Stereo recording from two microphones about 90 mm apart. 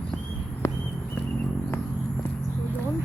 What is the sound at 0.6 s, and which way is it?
Horse, 35° left (ahead or behind).